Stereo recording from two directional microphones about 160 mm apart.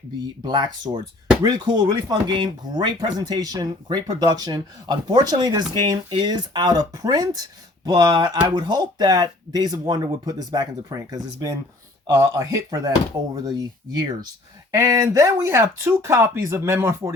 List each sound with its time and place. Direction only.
0.4 s speech: 25° right (ahead or behind)